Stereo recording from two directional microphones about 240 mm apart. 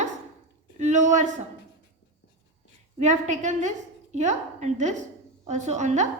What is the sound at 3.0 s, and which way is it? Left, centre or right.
A woman's voice, right.